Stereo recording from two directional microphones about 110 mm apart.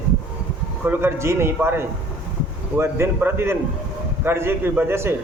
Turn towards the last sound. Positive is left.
turn(degrees=-20)  # may be behind; listen again after turning